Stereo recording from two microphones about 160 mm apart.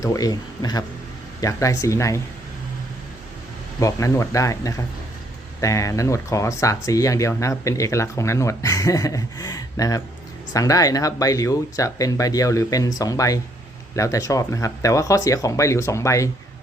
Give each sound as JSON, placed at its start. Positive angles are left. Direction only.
{"t": 0.0, "sound": "speech", "side_deg": 20}
{"t": 3.8, "sound": "speech", "side_deg": 20}